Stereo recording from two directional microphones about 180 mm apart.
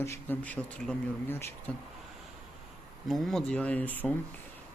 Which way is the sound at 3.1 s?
Centre (ahead or behind).